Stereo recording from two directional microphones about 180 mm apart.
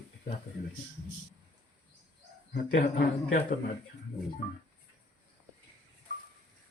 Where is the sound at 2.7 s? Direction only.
45° left (ahead or behind).